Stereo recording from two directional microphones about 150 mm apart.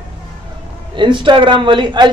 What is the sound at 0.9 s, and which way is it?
A man's voice, 35° right (ahead or behind).